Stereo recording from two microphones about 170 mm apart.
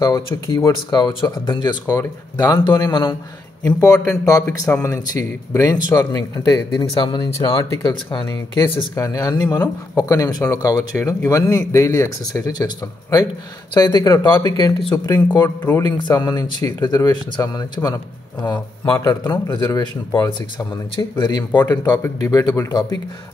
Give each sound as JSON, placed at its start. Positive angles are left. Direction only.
{"t": 0.0, "sound": "a man's voice", "side_deg": 20}
{"t": 4.7, "sound": "speech", "side_deg": 10}
{"t": 5.5, "sound": "a man's voice", "side_deg": 20}